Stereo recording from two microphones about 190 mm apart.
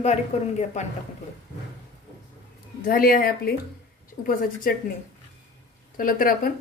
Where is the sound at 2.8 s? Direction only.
50° left (ahead or behind).